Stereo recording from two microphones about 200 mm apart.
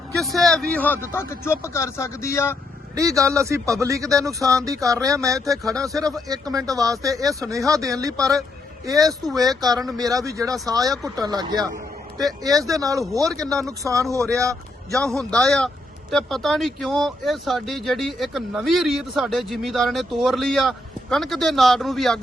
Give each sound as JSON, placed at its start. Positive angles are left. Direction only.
{"t": 0.2, "sound": "speech", "side_deg": 0}
{"t": 2.9, "sound": "speech", "side_deg": -15}
{"t": 14.9, "sound": "speech", "side_deg": 5}